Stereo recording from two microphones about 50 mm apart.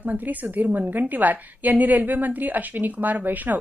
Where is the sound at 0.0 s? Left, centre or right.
Right.